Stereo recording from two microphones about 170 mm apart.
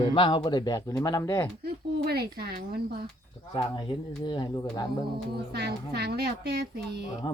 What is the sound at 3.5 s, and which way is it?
Speech, 20° left (ahead or behind).